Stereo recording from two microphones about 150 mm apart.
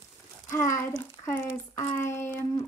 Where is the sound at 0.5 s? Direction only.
20° left (ahead or behind).